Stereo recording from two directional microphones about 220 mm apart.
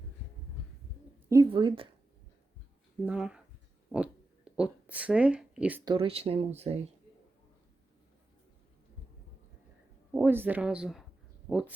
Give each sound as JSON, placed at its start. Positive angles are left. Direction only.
{"t": 1.3, "sound": "speech", "side_deg": -20}
{"t": 3.1, "sound": "speech", "side_deg": -5}
{"t": 5.8, "sound": "speech", "side_deg": -25}
{"t": 10.2, "sound": "speech", "side_deg": -10}